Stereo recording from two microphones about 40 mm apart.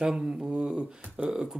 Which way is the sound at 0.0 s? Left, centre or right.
Centre.